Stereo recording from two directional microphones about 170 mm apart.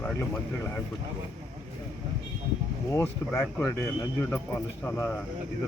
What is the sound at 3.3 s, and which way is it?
Speech, 10° left (ahead or behind).